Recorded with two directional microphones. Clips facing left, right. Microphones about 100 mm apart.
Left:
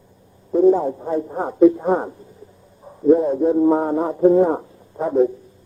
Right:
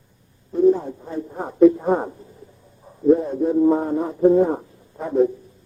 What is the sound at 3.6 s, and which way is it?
Speech, 50° left (ahead or behind).